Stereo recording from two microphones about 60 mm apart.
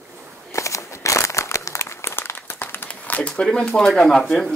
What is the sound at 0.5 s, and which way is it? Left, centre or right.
Crumpling, left.